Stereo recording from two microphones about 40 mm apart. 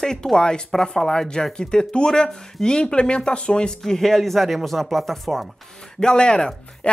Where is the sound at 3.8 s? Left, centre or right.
Centre.